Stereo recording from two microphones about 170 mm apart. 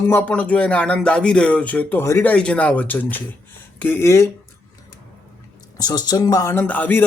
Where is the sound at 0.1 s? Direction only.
10° left (ahead or behind).